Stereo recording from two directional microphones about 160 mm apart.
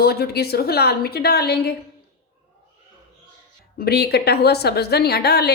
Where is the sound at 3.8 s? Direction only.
85° left.